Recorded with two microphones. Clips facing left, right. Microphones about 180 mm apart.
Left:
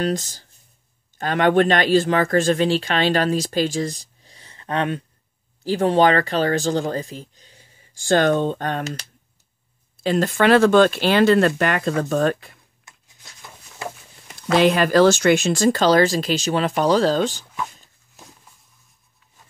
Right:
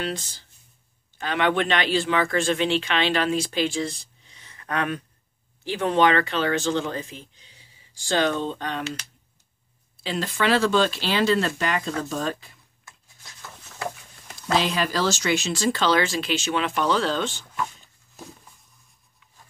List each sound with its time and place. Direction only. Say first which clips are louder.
0.0 s speech: left 7 dB; 40° left (ahead or behind)
10.0 s speech: left 7 dB; 50° left (ahead or behind)
14.5 s speech: left 8 dB; 60° left (ahead or behind); by 17.8 s 35° left (ahead or behind)